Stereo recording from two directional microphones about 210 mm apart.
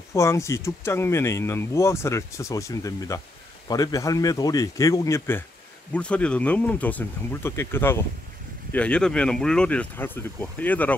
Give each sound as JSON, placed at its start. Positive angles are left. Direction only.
{"t": 0.1, "sound": "speech", "side_deg": 15}